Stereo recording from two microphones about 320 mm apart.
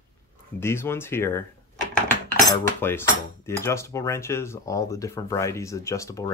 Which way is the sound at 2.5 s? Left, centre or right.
Centre.